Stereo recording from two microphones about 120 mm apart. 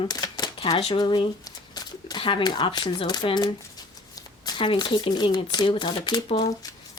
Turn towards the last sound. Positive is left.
turn(degrees=55)  # may be behind; listen again after turning